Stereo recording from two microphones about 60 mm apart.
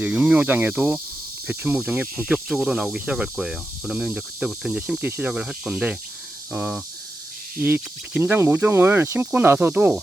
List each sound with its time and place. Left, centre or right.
0.0 s speech: right
0.7 s speech: centre
4.9 s speech: right
5.3 s speech: centre
8.2 s speech: right